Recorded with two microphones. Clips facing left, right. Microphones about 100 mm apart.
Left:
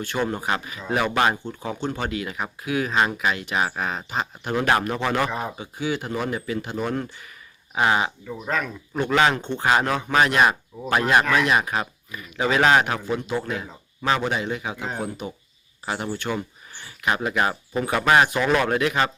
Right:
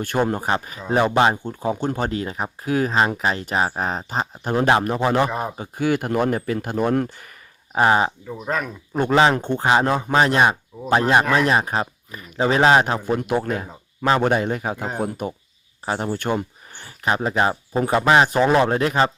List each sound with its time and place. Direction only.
0.2 s a man's voice: 40° right (ahead or behind)
1.5 s a man's voice: 40° right (ahead or behind); by 5.3 s 25° right (ahead or behind)
5.5 s speech: 50° right (ahead or behind)
7.8 s a man's voice: 35° right (ahead or behind)
9.3 s speech: 45° right (ahead or behind)
9.6 s a man's voice: 25° right (ahead or behind)
13.1 s speech: 50° right (ahead or behind)
14.2 s speech: 50° right (ahead or behind)
15.9 s a man's voice: 35° right (ahead or behind)
16.1 s a man's voice: 45° right (ahead or behind)